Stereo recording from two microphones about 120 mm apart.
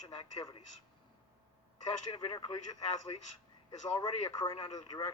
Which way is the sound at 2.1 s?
40° left (ahead or behind).